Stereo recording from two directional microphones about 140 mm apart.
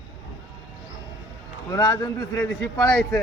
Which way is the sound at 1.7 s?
25° left (ahead or behind).